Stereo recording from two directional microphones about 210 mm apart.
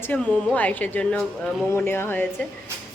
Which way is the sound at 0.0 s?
5° left (ahead or behind).